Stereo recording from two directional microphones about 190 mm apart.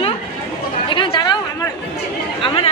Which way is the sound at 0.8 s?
25° left (ahead or behind).